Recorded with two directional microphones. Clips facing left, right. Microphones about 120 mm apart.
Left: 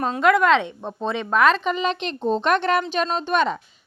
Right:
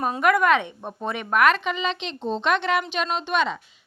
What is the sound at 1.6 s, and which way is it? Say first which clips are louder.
A woman's voice: left 4 dB; 45° left (ahead or behind).